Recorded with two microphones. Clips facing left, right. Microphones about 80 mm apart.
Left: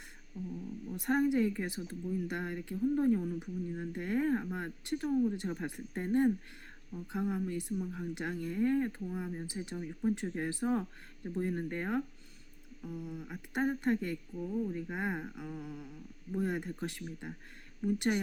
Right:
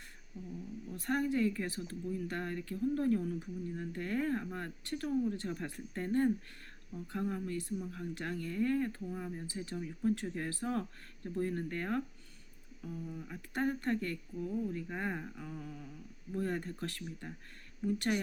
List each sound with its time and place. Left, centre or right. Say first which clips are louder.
0.4 s speech: left 5 dB; centre
0.9 s speech: left 4 dB; centre
5.0 s speech: left 3 dB; centre
5.4 s speech: left 2 dB; centre